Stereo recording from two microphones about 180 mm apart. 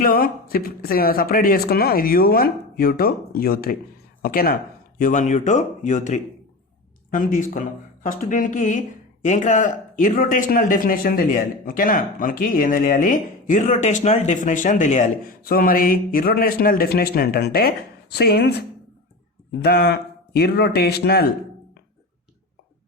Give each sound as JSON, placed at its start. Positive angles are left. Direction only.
{"t": 0.0, "sound": "speech", "side_deg": 50}
{"t": 19.6, "sound": "speech", "side_deg": 65}